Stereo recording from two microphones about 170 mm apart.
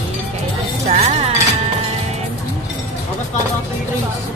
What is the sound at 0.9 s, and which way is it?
Music, 40° right (ahead or behind).